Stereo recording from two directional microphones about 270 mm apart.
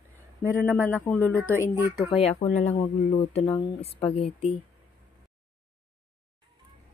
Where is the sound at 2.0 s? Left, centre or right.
Left.